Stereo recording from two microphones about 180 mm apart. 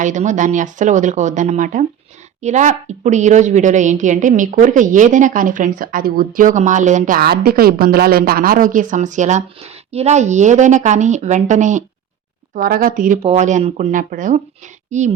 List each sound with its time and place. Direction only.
0.0 s a woman's voice: 45° right (ahead or behind)